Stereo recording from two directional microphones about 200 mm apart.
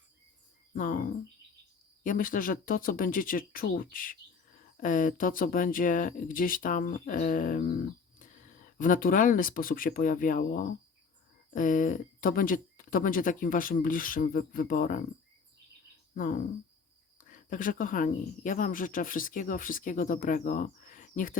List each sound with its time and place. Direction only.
0.7 s speech: 45° left (ahead or behind)
2.0 s speech: 45° left (ahead or behind)
16.1 s speech: 40° left (ahead or behind)